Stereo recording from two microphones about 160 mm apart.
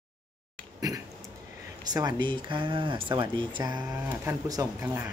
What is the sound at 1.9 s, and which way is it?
Speech, 25° right (ahead or behind).